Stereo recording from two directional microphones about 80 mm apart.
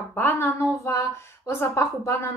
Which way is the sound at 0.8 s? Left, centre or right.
Left.